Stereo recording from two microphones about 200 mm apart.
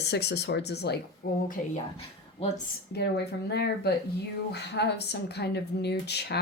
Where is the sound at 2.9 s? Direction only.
55° left (ahead or behind).